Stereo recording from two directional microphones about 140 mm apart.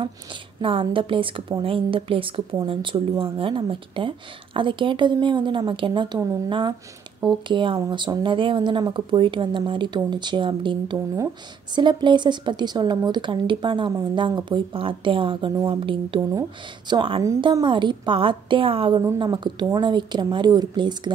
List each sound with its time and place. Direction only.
0.6 s speech: 40° right (ahead or behind)
18.9 s speech: 30° right (ahead or behind)